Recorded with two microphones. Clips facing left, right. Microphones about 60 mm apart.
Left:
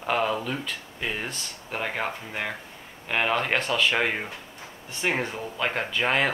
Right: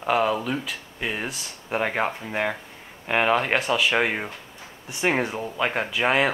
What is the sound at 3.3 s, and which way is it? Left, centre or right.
Speech, centre.